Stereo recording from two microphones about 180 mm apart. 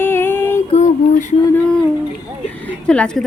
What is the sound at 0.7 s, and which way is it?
Female singing, 40° left (ahead or behind).